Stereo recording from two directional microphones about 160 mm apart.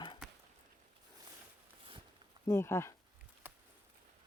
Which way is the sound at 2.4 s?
15° left (ahead or behind).